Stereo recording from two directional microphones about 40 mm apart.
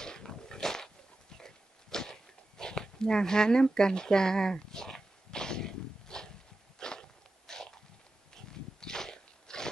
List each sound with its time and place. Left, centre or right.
0.0 s dog: centre
6.8 s biting: centre
8.5 s a sound: centre